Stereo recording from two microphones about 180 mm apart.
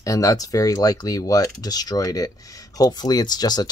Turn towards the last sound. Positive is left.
turn(degrees=20)  # may be behind; listen again after turning